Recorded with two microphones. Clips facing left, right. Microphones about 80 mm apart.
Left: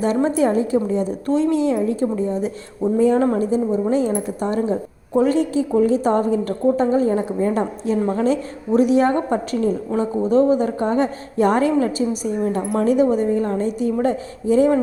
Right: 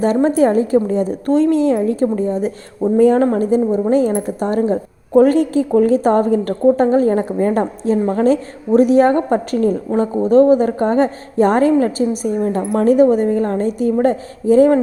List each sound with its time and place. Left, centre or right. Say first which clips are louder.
0.0 s a woman's voice: right 4 dB; right
7.6 s a woman's voice: right 4 dB; right
8.1 s a woman's voice: right 5 dB; right